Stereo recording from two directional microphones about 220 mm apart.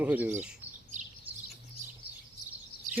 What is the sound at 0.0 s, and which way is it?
Speech, 10° right (ahead or behind).